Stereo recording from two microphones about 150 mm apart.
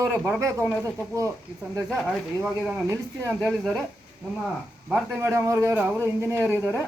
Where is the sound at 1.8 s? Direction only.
Centre (ahead or behind).